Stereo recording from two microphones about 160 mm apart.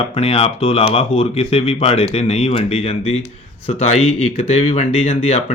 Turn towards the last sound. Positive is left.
turn(degrees=40)  # may be behind; listen again after turning